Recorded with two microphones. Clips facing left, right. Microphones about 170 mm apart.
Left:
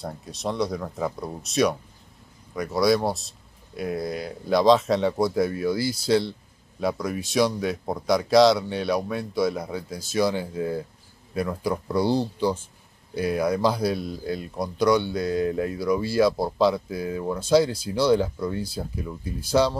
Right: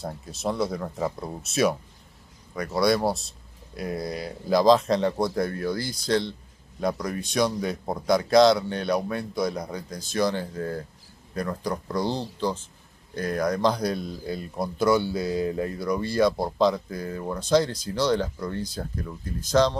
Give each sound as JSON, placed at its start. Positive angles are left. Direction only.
{"t": 0.0, "sound": "speech", "side_deg": 0}